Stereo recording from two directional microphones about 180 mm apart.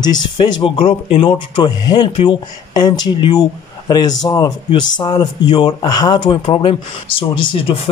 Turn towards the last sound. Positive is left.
turn(degrees=30)  # may be behind; listen again after turning